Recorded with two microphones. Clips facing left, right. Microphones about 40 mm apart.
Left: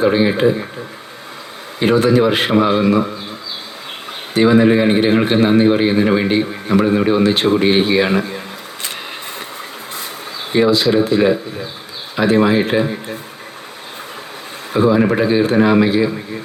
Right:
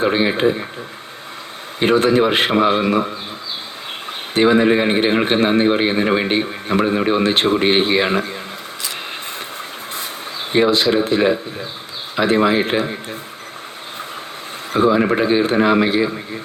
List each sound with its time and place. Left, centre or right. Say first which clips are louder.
0.0 s a man's voice: left 3 dB; right
1.8 s a man's voice: left 1 dB; right
4.5 s a man's voice: left 3 dB; right
10.5 s a man's voice: left 2 dB; right
14.7 s a man's voice: left 1 dB; right